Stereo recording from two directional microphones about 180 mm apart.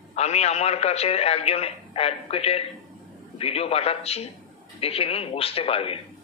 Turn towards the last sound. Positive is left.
turn(degrees=30)  # may be behind; listen again after turning